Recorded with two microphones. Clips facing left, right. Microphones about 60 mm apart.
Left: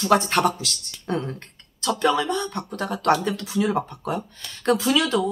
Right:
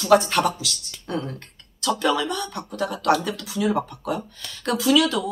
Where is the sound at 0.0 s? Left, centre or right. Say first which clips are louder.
Right 2 dB; left.